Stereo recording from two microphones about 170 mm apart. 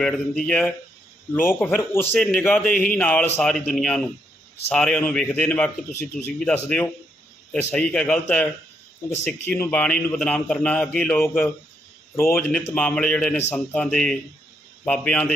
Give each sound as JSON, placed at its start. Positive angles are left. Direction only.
{"t": 0.0, "sound": "a man's voice", "side_deg": 5}